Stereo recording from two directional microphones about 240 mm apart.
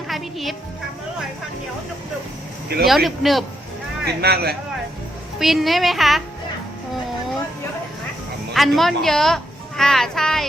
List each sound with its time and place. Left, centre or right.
0.1 s music: centre
2.8 s a child's voice: centre
4.2 s speech: right
5.4 s a child's voice: centre
8.5 s a child's voice: centre